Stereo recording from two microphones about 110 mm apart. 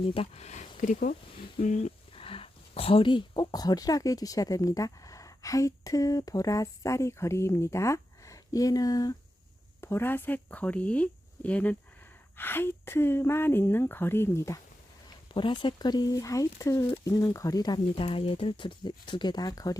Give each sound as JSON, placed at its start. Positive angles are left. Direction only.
{"t": 0.1, "sound": "speech", "side_deg": 70}
{"t": 1.5, "sound": "a sound", "side_deg": 90}
{"t": 2.2, "sound": "speech", "side_deg": 55}
{"t": 9.8, "sound": "a woman's voice", "side_deg": 20}
{"t": 15.3, "sound": "speech", "side_deg": 50}